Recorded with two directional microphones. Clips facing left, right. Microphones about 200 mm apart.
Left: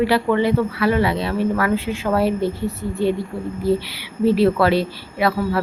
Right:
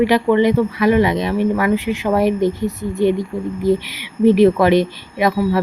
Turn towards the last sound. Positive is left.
turn(degrees=-15)  # may be behind; listen again after turning